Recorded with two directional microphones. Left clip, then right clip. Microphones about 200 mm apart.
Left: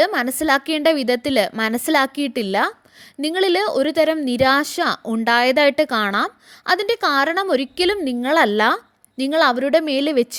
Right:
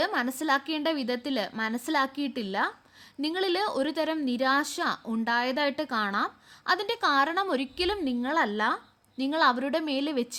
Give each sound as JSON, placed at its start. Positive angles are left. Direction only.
{"t": 0.0, "sound": "speech", "side_deg": 35}